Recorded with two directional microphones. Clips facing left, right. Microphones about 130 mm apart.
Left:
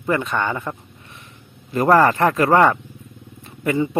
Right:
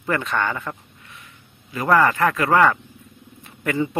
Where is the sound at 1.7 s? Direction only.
35° left (ahead or behind).